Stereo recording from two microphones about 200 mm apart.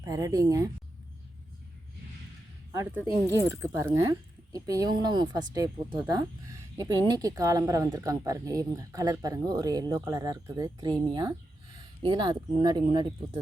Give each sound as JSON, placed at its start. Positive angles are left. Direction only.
{"t": 0.0, "sound": "speech", "side_deg": -15}
{"t": 2.7, "sound": "speech", "side_deg": -10}